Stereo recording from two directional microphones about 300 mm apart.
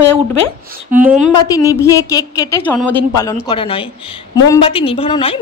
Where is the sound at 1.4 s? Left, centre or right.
Centre.